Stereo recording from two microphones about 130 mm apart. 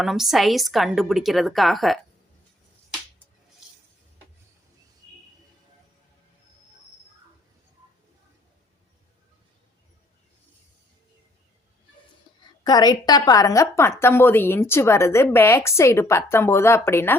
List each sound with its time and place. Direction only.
0.0 s a woman's voice: 5° right (ahead or behind)
12.3 s a sound: 40° left (ahead or behind)
12.6 s a woman's voice: 30° left (ahead or behind)